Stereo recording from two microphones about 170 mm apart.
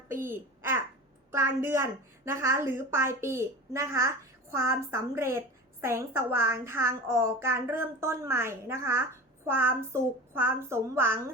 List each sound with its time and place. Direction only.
0.1 s babbling: 15° right (ahead or behind)
1.3 s a woman's voice: 15° right (ahead or behind)